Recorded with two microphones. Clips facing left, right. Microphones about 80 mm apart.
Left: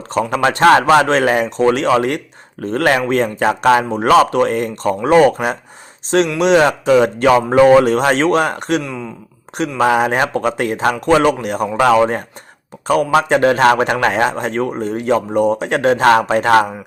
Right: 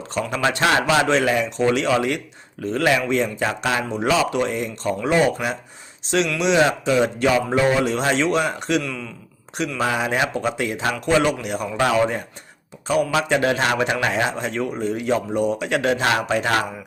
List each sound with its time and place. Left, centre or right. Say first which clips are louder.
0.4 s speech: left 8 dB; left
8.8 s speech: left 4 dB; left
9.8 s speech: left 8 dB; left
12.9 s speech: left 6 dB; left